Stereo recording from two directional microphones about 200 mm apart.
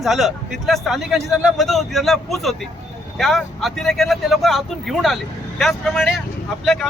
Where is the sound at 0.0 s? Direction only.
Centre (ahead or behind).